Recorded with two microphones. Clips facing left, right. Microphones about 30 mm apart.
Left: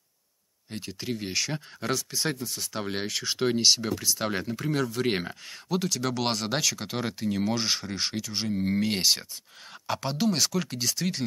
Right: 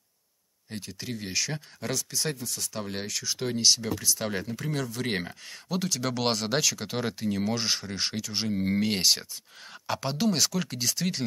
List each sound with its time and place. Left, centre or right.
0.7 s speech: centre